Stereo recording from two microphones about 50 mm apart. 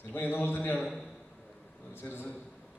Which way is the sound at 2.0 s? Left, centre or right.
Left.